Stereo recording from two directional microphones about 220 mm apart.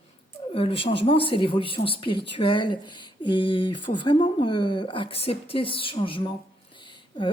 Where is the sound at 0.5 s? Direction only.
25° left (ahead or behind).